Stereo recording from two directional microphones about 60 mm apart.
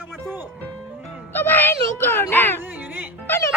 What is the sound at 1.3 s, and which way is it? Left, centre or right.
Speech, left.